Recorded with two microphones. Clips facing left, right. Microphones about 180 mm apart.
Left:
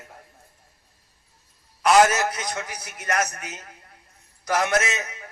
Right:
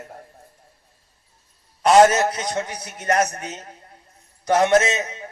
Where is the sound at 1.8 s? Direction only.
30° right (ahead or behind).